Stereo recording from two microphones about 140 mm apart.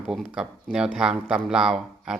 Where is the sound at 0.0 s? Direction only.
10° right (ahead or behind).